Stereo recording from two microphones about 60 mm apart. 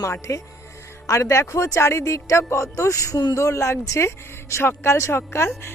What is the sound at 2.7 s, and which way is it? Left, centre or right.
Speech, left.